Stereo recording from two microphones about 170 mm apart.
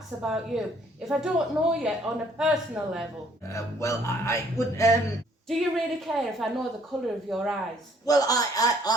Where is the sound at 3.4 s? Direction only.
15° left (ahead or behind).